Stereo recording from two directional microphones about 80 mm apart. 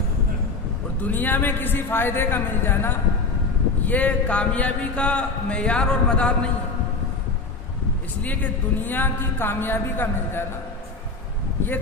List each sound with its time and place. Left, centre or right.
1.0 s a woman's voice: left
8.2 s a woman's voice: left